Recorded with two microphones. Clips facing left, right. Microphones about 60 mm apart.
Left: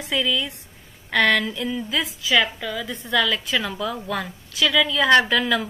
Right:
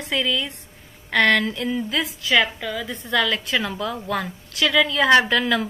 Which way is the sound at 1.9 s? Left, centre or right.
Centre.